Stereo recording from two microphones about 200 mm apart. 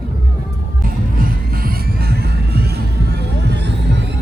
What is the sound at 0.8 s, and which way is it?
Music, 45° right (ahead or behind).